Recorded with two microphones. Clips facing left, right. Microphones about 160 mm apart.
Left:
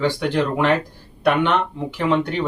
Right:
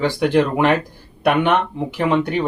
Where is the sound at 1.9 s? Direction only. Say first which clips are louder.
Right 1 dB; 15° right (ahead or behind).